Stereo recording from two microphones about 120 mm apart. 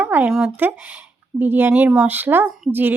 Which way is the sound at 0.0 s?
15° right (ahead or behind).